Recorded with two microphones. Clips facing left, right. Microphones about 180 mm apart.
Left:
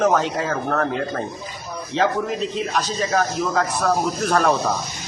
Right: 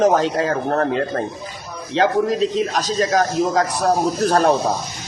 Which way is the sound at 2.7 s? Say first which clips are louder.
Right 3 dB; 40° right (ahead or behind).